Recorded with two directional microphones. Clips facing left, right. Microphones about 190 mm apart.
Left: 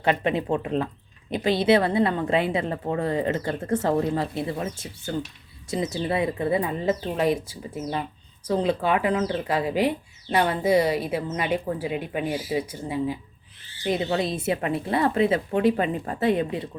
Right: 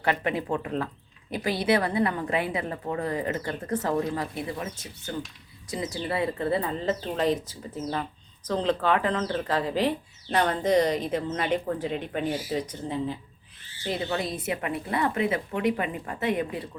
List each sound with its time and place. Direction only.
0.0 s a woman's voice: 20° left (ahead or behind)